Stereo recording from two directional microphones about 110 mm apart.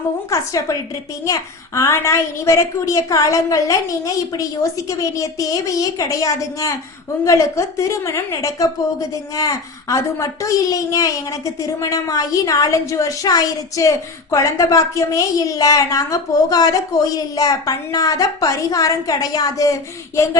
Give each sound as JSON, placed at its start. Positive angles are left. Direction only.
{"t": 0.3, "sound": "a woman's voice", "side_deg": 30}